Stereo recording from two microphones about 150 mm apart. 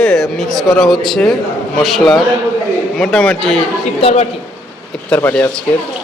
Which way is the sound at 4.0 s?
40° left (ahead or behind).